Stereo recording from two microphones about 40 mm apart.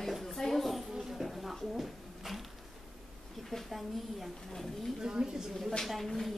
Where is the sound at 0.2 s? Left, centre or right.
Centre.